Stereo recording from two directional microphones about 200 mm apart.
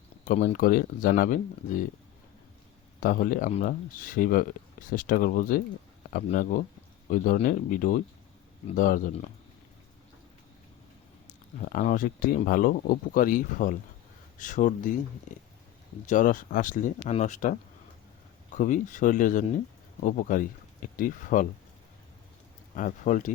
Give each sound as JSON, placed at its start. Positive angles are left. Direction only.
{"t": 0.3, "sound": "speech", "side_deg": 45}
{"t": 3.0, "sound": "speech", "side_deg": 45}
{"t": 11.3, "sound": "speech", "side_deg": 40}
{"t": 18.5, "sound": "speech", "side_deg": 40}
{"t": 22.7, "sound": "speech", "side_deg": 40}